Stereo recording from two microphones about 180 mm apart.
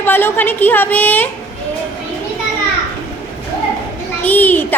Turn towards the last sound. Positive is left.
turn(degrees=10)  # may be behind; listen again after turning